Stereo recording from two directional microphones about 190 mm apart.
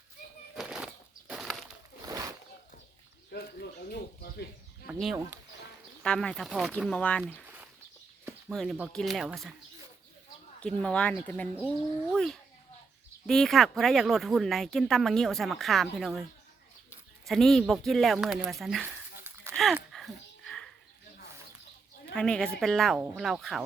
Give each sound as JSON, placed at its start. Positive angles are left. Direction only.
{"t": 0.5, "sound": "a sound", "side_deg": -5}
{"t": 1.3, "sound": "bird", "side_deg": 0}
{"t": 2.0, "sound": "a sound", "side_deg": -15}
{"t": 3.3, "sound": "bird", "side_deg": 55}
{"t": 6.0, "sound": "speech", "side_deg": 5}
{"t": 8.4, "sound": "speech", "side_deg": 0}
{"t": 10.6, "sound": "speech", "side_deg": 5}
{"t": 17.2, "sound": "speech", "side_deg": 0}
{"t": 19.9, "sound": "dog", "side_deg": 0}
{"t": 22.1, "sound": "speech", "side_deg": 5}